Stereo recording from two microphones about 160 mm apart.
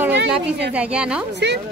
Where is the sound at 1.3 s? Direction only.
90° right.